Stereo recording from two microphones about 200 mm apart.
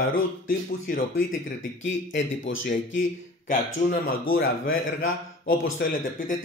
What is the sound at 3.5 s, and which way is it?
Speech, 45° left (ahead or behind).